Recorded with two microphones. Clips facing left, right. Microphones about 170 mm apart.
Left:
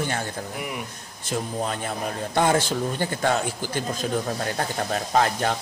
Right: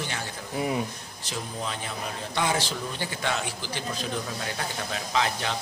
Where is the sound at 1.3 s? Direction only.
50° left (ahead or behind).